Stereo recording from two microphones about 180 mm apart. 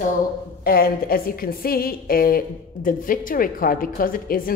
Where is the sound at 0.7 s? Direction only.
55° left (ahead or behind).